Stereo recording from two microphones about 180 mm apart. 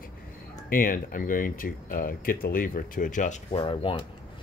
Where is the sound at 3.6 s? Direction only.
30° left (ahead or behind).